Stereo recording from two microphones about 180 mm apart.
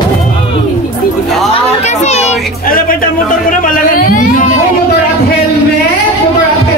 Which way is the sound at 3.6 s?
50° left (ahead or behind).